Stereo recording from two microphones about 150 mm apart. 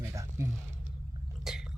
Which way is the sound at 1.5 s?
Centre (ahead or behind).